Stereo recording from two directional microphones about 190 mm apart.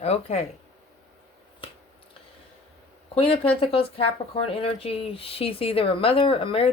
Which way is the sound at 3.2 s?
30° left (ahead or behind).